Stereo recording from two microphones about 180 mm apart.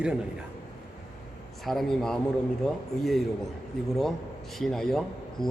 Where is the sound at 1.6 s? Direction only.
Centre (ahead or behind).